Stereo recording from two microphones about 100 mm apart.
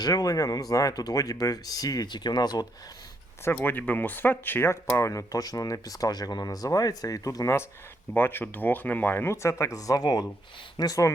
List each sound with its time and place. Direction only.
0.0 s speech: 40° left (ahead or behind)
3.4 s speech: 20° left (ahead or behind); by 11.1 s 35° left (ahead or behind)